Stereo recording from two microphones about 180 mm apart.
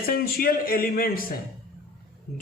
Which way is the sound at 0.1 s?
55° left (ahead or behind).